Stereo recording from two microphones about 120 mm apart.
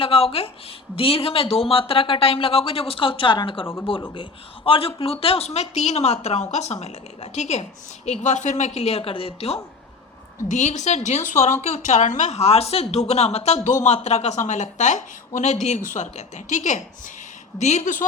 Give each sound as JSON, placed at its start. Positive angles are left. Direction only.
{"t": 0.0, "sound": "speech", "side_deg": 50}
{"t": 10.5, "sound": "a woman's voice", "side_deg": 80}
{"t": 13.7, "sound": "a woman's voice", "side_deg": 80}
{"t": 17.6, "sound": "a woman's voice", "side_deg": 75}